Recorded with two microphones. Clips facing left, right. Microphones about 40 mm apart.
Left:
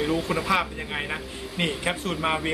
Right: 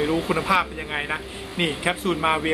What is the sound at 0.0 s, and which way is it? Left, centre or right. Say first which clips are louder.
Speech: right 3 dB; centre.